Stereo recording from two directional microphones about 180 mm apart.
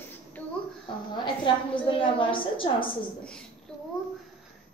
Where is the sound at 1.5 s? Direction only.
25° left (ahead or behind).